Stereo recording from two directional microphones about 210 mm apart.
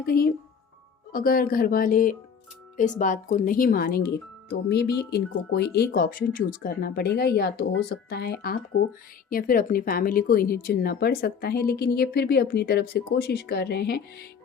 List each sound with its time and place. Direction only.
0.0 s speech: 45° left (ahead or behind)